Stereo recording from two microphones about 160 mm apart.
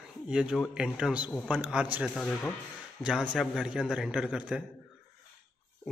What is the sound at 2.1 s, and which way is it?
A man's voice, 5° left (ahead or behind).